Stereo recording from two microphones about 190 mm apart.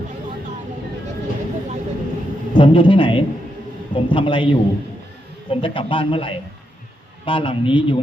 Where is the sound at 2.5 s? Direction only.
25° left (ahead or behind).